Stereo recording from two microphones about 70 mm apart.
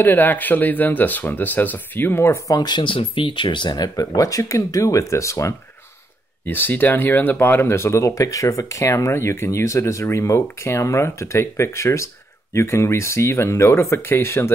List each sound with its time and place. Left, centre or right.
0.0 s speech: left
3.6 s speech: left
6.4 s speech: left